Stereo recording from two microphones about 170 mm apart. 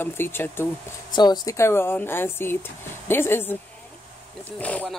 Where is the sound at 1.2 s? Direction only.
25° left (ahead or behind).